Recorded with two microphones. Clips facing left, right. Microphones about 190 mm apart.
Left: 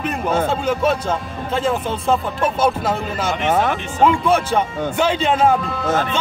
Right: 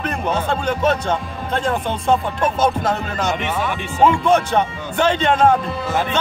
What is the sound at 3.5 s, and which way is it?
Speech, 50° left (ahead or behind).